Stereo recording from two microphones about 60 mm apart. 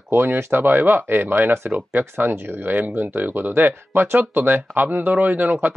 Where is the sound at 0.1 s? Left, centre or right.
Right.